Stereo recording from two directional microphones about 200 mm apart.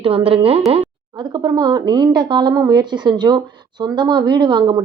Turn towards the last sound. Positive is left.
turn(degrees=-20)  # may be behind; listen again after turning